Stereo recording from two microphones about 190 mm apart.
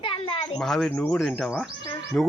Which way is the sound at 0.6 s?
Centre (ahead or behind).